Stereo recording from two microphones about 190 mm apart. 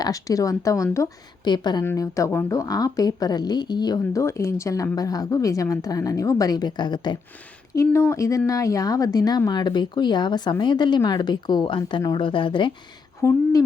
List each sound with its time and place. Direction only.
0.0 s a woman's voice: 20° left (ahead or behind)
13.2 s speech: 10° right (ahead or behind)